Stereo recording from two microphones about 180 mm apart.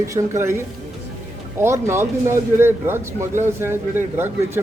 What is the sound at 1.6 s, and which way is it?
Speech, 15° right (ahead or behind).